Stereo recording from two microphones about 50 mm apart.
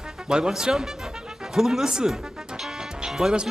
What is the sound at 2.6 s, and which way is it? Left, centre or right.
Music, centre.